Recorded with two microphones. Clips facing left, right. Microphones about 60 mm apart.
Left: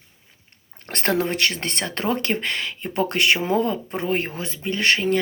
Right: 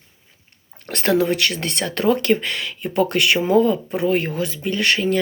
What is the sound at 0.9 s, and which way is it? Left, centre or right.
Speech, left.